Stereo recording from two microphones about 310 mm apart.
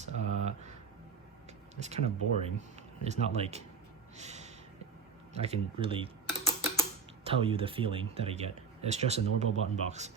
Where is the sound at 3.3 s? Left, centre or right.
Right.